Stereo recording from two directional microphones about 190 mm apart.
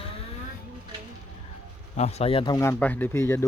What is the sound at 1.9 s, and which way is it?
Speech, 35° left (ahead or behind).